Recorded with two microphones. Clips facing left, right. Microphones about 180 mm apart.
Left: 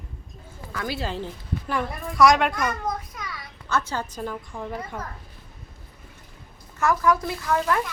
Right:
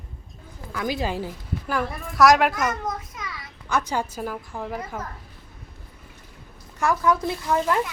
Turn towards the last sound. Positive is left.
turn(degrees=-20)  # may be behind; listen again after turning